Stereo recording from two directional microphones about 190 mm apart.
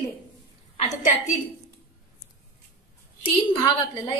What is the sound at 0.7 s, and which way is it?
Speech, 35° left (ahead or behind).